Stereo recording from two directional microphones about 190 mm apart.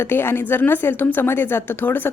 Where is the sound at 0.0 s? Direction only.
10° left (ahead or behind).